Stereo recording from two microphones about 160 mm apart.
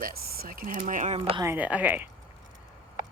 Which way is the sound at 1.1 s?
35° right (ahead or behind).